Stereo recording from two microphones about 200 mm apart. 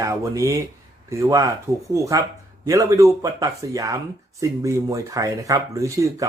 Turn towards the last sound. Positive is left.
turn(degrees=-15)  # may be behind; listen again after turning